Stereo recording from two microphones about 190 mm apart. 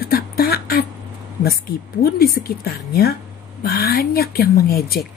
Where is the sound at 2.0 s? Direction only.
50° left (ahead or behind).